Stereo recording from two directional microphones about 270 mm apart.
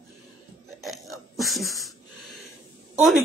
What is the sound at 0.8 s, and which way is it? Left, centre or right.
Burping, centre.